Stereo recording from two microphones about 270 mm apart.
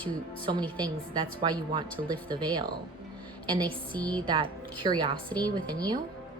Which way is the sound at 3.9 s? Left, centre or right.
Centre.